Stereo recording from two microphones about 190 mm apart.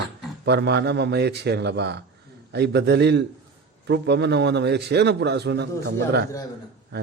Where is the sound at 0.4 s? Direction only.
60° right (ahead or behind).